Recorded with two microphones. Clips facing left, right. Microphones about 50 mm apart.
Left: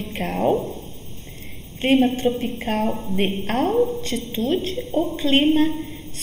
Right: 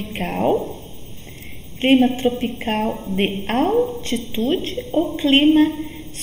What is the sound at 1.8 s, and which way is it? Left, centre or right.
Speech, centre.